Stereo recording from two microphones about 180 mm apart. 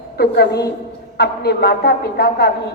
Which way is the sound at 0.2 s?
65° left (ahead or behind).